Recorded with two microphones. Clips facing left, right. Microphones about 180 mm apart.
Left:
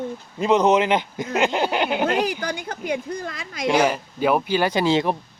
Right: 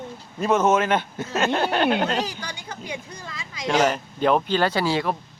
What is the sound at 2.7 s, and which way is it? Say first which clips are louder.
A woman's voice: left 6 dB; 55° left (ahead or behind).